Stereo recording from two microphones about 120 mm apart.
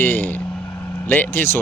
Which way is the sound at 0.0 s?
15° left (ahead or behind).